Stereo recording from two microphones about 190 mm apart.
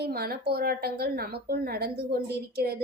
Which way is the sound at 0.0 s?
55° right (ahead or behind).